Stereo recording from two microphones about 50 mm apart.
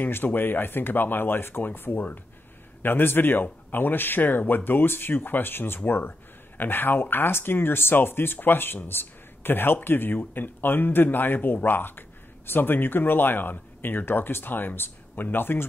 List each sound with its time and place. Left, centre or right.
0.0 s speech: left
2.8 s speech: left